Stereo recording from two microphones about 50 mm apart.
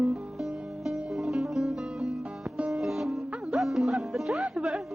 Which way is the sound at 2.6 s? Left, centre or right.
Right.